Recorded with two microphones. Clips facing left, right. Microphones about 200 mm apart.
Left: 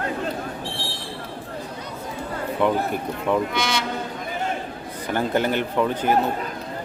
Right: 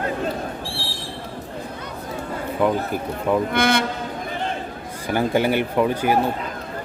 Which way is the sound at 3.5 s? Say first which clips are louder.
Right 6 dB; 55° right (ahead or behind).